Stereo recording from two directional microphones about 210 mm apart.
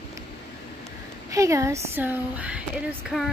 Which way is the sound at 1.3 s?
15° right (ahead or behind).